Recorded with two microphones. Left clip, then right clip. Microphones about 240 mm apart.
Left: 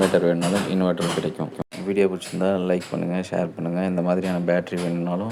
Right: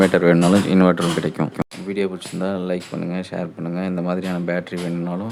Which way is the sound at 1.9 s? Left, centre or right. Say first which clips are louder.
Left 4 dB; centre.